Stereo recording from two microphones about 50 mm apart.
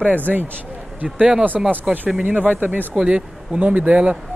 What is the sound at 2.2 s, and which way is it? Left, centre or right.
Speech, right.